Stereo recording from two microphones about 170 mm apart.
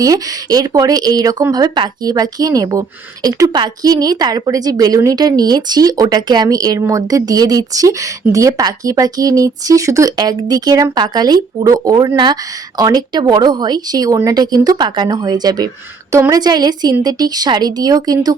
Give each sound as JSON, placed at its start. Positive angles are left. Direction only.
{"t": 0.0, "sound": "a woman's voice", "side_deg": -20}